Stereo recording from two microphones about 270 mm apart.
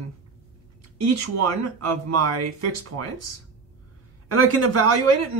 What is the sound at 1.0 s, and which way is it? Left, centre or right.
Speech, right.